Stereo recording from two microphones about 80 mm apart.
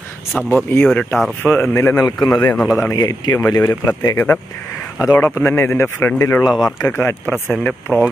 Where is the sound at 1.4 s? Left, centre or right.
Left.